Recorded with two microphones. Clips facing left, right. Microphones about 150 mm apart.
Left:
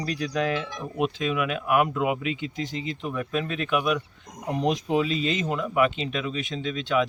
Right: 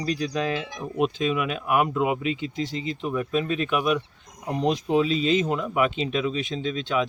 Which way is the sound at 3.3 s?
Centre (ahead or behind).